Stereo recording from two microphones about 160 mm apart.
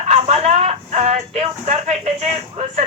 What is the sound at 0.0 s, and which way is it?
Music, 40° right (ahead or behind).